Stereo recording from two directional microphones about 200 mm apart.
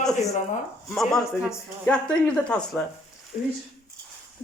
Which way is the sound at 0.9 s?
Centre (ahead or behind).